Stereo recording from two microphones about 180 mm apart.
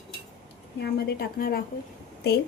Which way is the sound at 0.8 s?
60° left (ahead or behind).